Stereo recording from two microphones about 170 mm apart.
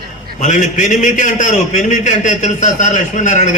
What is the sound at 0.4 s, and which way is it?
A man's voice, 45° left (ahead or behind).